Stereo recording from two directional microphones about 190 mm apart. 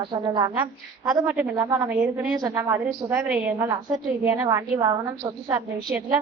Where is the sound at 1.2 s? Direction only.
5° right (ahead or behind).